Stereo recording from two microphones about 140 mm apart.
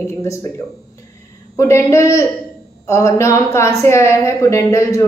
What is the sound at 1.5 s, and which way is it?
A woman's voice, 20° left (ahead or behind).